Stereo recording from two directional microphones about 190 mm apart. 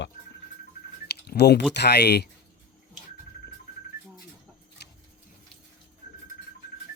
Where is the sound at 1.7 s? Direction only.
60° left (ahead or behind).